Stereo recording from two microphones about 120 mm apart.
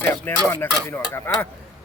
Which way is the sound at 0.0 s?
20° left (ahead or behind).